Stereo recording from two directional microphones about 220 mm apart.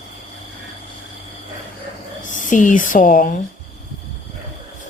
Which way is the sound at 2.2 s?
35° left (ahead or behind).